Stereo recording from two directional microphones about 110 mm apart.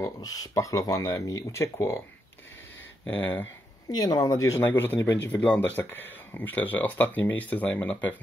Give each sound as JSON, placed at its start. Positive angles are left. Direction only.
{"t": 0.0, "sound": "speech", "side_deg": 35}
{"t": 3.2, "sound": "speech", "side_deg": 20}
{"t": 3.9, "sound": "speech", "side_deg": 35}